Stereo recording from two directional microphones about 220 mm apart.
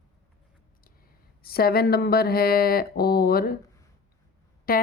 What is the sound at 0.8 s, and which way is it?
Speech, 45° left (ahead or behind).